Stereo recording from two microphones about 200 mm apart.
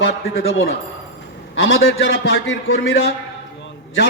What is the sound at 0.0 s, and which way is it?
A man's voice, 75° left (ahead or behind).